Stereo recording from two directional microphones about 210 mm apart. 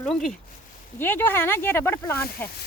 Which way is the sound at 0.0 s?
Centre (ahead or behind).